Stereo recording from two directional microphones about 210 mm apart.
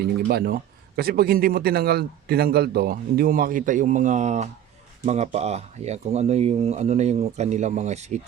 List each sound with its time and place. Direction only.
0.0 s a man's voice: 50° right (ahead or behind); by 8.2 s 35° right (ahead or behind)